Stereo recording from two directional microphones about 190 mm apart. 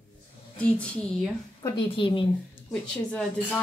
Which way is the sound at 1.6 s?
25° left (ahead or behind).